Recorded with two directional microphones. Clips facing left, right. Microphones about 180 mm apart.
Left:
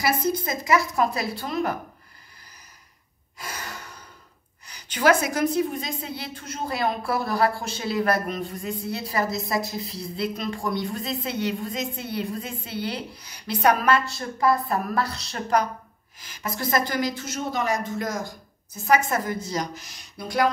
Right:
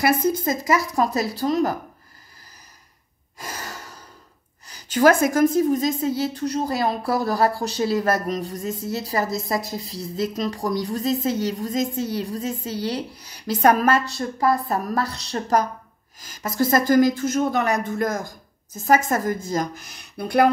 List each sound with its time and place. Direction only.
0.3 s a woman's voice: 40° right (ahead or behind)
3.3 s gasp: 40° right (ahead or behind)
4.6 s a woman's voice: 40° right (ahead or behind)
18.7 s a woman's voice: 45° right (ahead or behind); by 20.5 s 60° right (ahead or behind)